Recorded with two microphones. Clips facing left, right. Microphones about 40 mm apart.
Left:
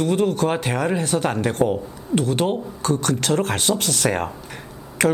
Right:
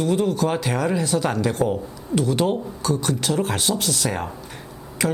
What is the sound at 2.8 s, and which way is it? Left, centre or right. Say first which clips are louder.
Speech: left 2 dB; left.